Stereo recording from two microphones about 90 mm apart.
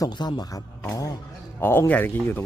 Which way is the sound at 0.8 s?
35° left (ahead or behind).